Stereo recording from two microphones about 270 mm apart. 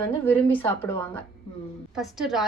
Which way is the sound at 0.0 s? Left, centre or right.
Centre.